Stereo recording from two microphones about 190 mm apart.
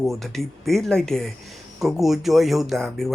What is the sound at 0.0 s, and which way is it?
Speech, centre (ahead or behind).